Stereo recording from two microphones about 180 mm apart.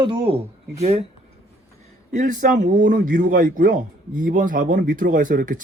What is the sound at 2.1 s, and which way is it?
Speech, 45° right (ahead or behind).